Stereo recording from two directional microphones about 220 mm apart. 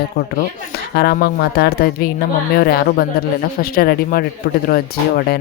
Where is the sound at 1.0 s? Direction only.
45° left (ahead or behind).